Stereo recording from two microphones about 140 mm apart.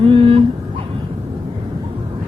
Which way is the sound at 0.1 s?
40° right (ahead or behind).